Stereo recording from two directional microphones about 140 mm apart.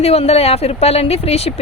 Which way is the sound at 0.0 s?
45° left (ahead or behind).